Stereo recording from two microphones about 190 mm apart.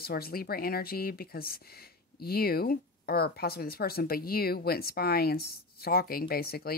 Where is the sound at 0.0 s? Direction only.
55° left (ahead or behind).